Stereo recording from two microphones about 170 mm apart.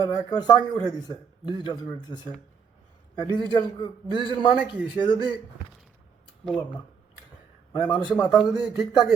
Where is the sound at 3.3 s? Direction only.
25° left (ahead or behind).